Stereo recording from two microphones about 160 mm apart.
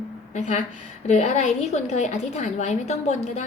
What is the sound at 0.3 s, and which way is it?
A woman's voice, 50° left (ahead or behind).